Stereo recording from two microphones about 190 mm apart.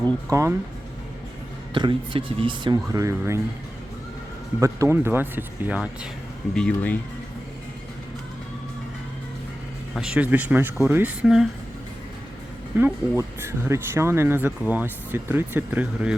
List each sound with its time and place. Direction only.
0.3 s speech: 15° right (ahead or behind)
1.7 s speech: 25° right (ahead or behind)
4.6 s speech: 15° right (ahead or behind)
6.5 s speech: 5° left (ahead or behind)
9.9 s speech: 5° right (ahead or behind)
12.7 s speech: 10° right (ahead or behind)